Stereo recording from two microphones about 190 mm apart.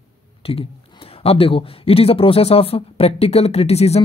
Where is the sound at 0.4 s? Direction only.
30° left (ahead or behind).